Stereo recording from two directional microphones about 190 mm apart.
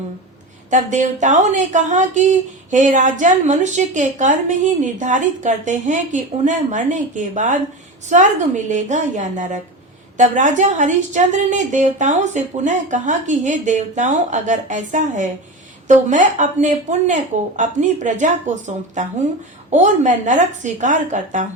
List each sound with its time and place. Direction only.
0.7 s a woman's voice: 40° right (ahead or behind)